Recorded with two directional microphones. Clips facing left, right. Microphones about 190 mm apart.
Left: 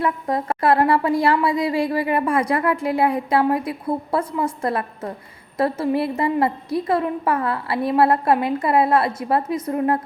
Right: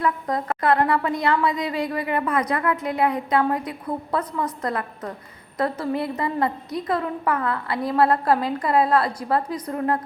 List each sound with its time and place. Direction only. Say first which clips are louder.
0.0 s a woman's voice: left 2 dB; 25° left (ahead or behind)